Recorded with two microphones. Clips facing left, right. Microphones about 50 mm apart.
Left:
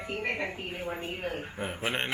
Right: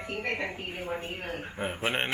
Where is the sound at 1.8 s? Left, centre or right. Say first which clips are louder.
Right 2 dB; centre.